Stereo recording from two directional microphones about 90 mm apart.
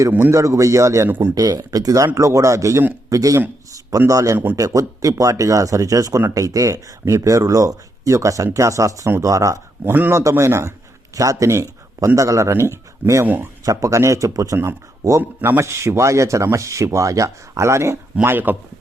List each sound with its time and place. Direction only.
0.3 s speech: 35° right (ahead or behind)
1.4 s speech: 45° right (ahead or behind)
9.8 s speech: 20° right (ahead or behind)
10.1 s a man's voice: 30° right (ahead or behind)
13.7 s speech: 40° right (ahead or behind)
15.2 s speech: 25° right (ahead or behind)